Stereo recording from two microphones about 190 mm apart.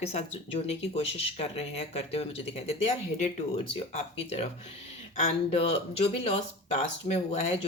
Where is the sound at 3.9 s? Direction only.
35° left (ahead or behind).